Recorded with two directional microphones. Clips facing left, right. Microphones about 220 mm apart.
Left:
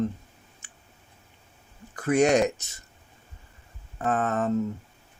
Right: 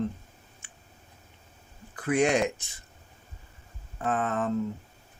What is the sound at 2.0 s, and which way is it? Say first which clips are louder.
Speech: left 4 dB; 45° left (ahead or behind).